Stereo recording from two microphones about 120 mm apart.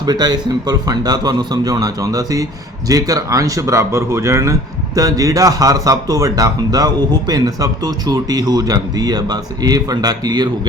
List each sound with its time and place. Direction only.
0.0 s speech: 35° right (ahead or behind)